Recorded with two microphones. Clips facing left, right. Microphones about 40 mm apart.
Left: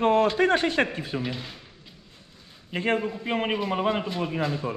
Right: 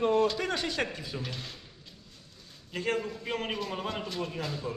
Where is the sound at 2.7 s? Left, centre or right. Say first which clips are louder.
Left 6 dB; left.